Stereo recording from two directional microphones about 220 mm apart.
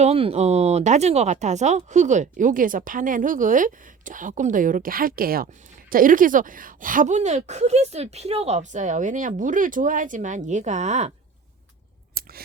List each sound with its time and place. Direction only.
0.0 s speech: 25° right (ahead or behind)
12.2 s scissors: 45° right (ahead or behind)